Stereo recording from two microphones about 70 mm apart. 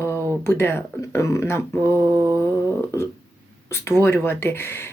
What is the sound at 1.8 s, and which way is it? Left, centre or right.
Mantra, right.